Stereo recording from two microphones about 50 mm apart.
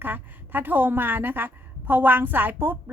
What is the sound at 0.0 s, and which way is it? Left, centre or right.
A woman's voice, right.